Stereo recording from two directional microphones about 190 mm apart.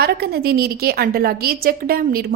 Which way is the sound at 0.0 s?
55° right (ahead or behind).